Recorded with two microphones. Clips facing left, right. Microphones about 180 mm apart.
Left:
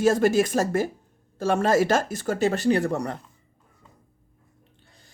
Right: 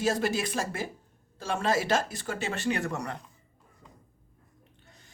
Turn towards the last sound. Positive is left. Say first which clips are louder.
# even
turn(degrees=30)  # may be behind; listen again after turning